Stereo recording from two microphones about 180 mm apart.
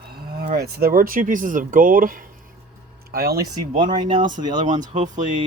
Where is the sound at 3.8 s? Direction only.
25° right (ahead or behind).